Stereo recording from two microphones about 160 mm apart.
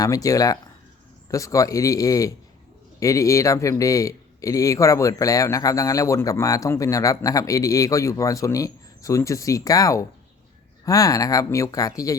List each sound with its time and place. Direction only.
0.0 s speech: 20° left (ahead or behind)